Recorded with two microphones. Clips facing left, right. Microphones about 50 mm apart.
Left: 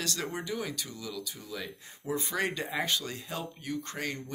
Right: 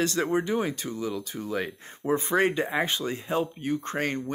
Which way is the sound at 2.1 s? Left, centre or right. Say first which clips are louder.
Right 8 dB; right.